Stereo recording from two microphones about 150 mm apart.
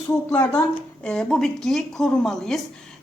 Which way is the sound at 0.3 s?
15° left (ahead or behind).